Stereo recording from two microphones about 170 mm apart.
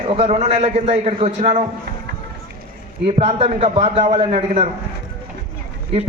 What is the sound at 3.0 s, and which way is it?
A man's voice, 40° right (ahead or behind).